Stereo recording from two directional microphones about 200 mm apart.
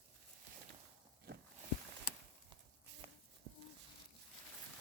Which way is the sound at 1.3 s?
50° right (ahead or behind).